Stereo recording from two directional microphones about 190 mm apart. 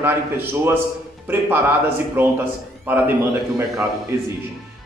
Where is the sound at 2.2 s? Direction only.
10° right (ahead or behind).